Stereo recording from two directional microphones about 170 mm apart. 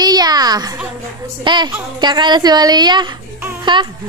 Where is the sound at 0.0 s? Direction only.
25° right (ahead or behind).